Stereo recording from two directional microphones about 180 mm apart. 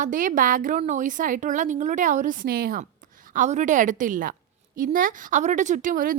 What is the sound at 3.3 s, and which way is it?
A woman's voice, 40° right (ahead or behind).